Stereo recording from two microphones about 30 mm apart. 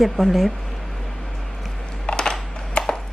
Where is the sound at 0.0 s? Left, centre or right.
Centre.